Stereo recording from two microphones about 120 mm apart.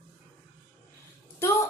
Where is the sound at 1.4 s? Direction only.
25° left (ahead or behind).